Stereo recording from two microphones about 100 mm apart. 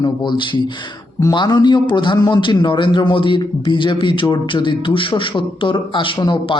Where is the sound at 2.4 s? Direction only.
50° left (ahead or behind).